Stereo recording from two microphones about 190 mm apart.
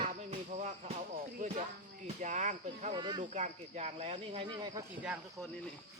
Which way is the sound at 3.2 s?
40° right (ahead or behind).